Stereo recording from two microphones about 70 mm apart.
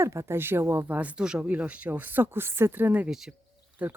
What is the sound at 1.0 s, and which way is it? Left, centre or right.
Speech, centre.